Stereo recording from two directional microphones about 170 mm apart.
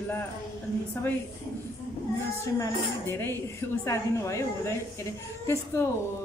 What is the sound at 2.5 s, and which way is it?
Speech, 15° left (ahead or behind).